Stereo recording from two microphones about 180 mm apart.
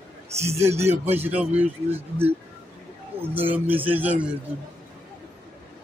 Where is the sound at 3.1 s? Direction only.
30° right (ahead or behind).